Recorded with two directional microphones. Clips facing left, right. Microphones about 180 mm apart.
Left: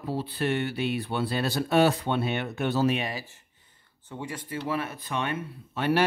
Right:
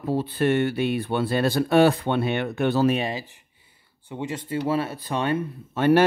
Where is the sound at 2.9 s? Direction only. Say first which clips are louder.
Right 4 dB; 30° right (ahead or behind).